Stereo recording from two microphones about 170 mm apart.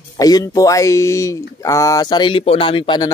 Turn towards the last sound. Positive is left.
turn(degrees=30)  # may be behind; listen again after turning